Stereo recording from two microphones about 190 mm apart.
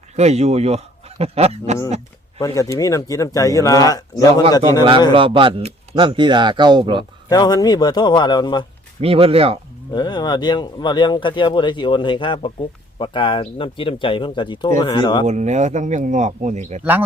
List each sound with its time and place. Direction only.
0.2 s a man's voice: 35° right (ahead or behind)
2.4 s speech: 20° left (ahead or behind)
5.1 s speech: 25° right (ahead or behind)
7.3 s speech: 20° left (ahead or behind)
9.0 s a man's voice: 30° right (ahead or behind)
9.9 s speech: 25° left (ahead or behind)
15.3 s a man's voice: 40° right (ahead or behind)